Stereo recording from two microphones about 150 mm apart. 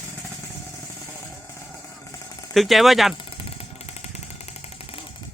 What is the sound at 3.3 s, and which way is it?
Vehicle, 40° left (ahead or behind).